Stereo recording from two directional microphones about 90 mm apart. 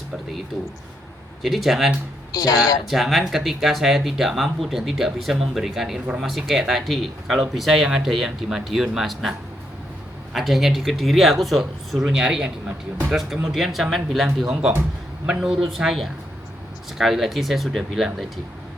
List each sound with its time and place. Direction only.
1.4 s speech: centre (ahead or behind)
2.3 s speech: 45° left (ahead or behind)
2.8 s speech: centre (ahead or behind)
10.3 s speech: centre (ahead or behind)